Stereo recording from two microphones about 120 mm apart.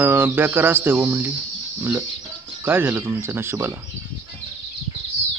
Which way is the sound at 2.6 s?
15° right (ahead or behind).